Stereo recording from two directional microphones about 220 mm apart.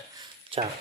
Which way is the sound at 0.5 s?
25° right (ahead or behind).